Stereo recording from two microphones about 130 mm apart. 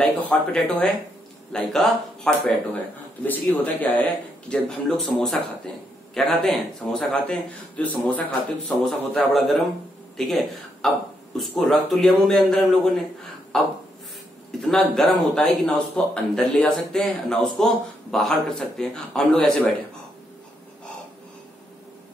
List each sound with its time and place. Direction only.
0.0 s a man's voice: 5° left (ahead or behind)